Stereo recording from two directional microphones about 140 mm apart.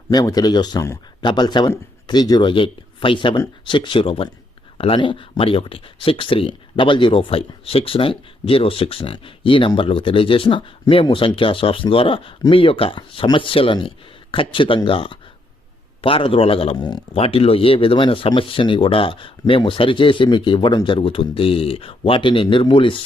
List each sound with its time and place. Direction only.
0.1 s speech: 30° left (ahead or behind); by 16.7 s 45° left (ahead or behind)
16.7 s speech: 30° left (ahead or behind)
17.2 s speech: 45° left (ahead or behind)